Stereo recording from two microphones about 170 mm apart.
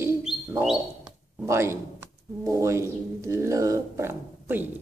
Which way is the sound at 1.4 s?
15° right (ahead or behind).